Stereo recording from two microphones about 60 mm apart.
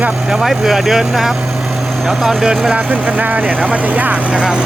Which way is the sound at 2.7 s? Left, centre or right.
Right.